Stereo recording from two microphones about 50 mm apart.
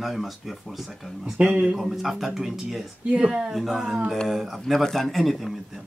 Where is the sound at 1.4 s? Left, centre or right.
Right.